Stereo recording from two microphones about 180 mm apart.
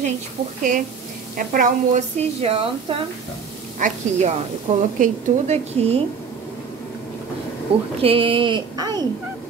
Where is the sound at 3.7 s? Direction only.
40° right (ahead or behind).